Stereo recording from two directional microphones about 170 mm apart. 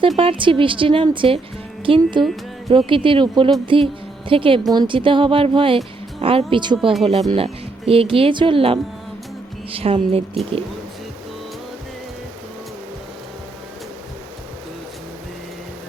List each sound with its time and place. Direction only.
0.2 s speech: 30° right (ahead or behind)